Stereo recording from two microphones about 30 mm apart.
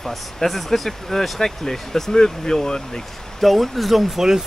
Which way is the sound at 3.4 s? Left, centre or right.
Centre.